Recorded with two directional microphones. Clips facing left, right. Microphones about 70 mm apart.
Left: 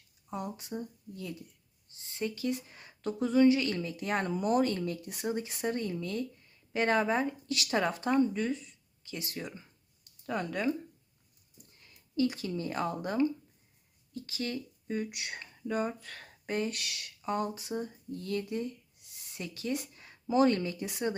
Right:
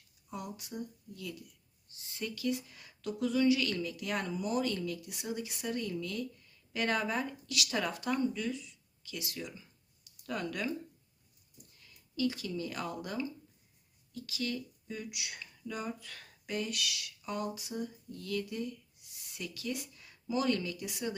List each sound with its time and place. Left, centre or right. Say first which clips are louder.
0.3 s speech: left 5 dB; left
10.2 s speech: left 4 dB; left
11.8 s speech: left 4 dB; left